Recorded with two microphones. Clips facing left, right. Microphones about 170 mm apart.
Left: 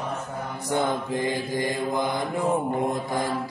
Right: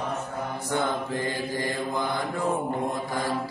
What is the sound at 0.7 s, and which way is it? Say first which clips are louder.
Mantra: left 3 dB; 15° left (ahead or behind).